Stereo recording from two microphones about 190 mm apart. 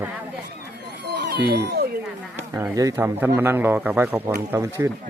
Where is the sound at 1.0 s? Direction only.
60° right (ahead or behind).